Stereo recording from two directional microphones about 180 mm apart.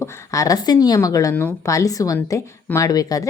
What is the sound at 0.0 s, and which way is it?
A woman's voice, 15° left (ahead or behind).